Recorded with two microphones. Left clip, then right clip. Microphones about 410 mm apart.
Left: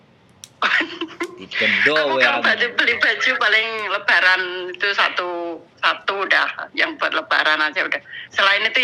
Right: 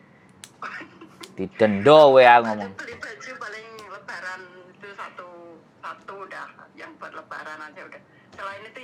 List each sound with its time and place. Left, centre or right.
0.6 s a sound: left
1.9 s a man's voice: right
2.4 s a man's voice: left